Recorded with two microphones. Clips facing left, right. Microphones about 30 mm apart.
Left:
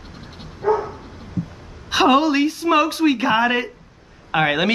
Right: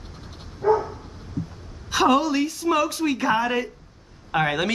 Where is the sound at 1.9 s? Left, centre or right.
Left.